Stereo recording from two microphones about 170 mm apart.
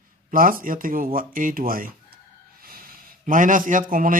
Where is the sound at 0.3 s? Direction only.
55° right (ahead or behind).